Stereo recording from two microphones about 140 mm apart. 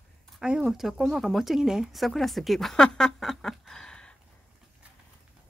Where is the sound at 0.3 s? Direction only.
5° right (ahead or behind).